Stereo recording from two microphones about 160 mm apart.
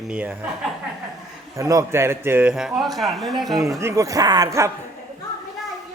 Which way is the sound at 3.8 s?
20° right (ahead or behind).